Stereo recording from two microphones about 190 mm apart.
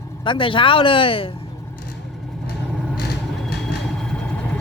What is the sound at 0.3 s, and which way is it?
Speech, 25° left (ahead or behind).